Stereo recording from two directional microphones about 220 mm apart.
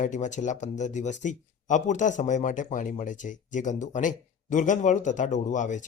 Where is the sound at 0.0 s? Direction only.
35° left (ahead or behind).